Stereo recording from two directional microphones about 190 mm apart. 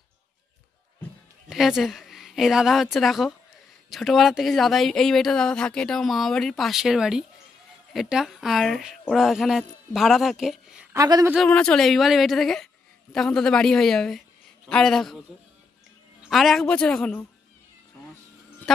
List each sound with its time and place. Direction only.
1.5 s a woman's voice: centre (ahead or behind)
11.0 s speech: 20° right (ahead or behind)
11.3 s speech: 5° left (ahead or behind)
16.2 s speech: centre (ahead or behind)